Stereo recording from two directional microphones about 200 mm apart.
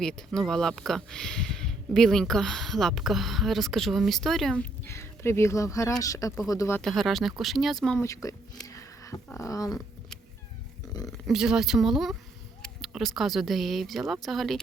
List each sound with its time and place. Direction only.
0.0 s speech: centre (ahead or behind)
6.8 s speech: centre (ahead or behind)
8.0 s speech: 15° left (ahead or behind)
8.6 s a sound: 15° left (ahead or behind)
9.4 s speech: 15° left (ahead or behind)
11.3 s speech: 5° right (ahead or behind)